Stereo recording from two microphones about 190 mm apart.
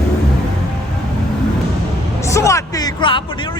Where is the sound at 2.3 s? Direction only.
15° left (ahead or behind).